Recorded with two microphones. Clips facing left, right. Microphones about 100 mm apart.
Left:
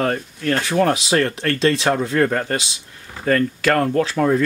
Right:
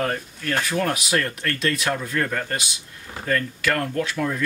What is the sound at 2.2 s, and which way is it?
Speech, 45° left (ahead or behind).